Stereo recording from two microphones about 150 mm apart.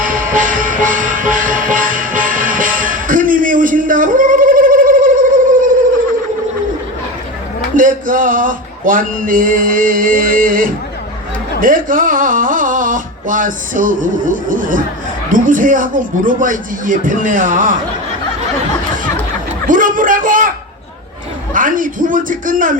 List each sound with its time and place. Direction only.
0.0 s music: 65° right (ahead or behind)
7.8 s a sound: 65° right (ahead or behind)
11.6 s speech: 65° right (ahead or behind)
19.6 s a man's voice: 65° right (ahead or behind)
21.5 s speech: 65° right (ahead or behind)